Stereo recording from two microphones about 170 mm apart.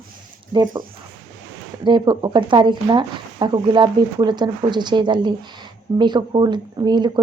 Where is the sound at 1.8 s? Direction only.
30° right (ahead or behind).